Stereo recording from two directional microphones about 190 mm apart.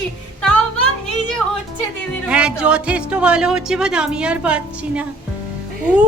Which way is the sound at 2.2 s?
5° right (ahead or behind).